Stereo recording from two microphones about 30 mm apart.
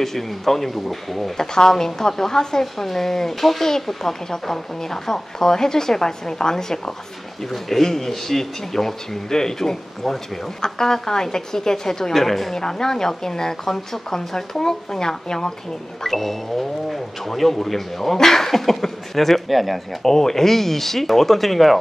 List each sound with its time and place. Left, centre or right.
0.0 s speech: centre
1.3 s speech: centre
7.4 s speech: centre
12.5 s speech: centre
16.0 s speech: centre
20.0 s speech: centre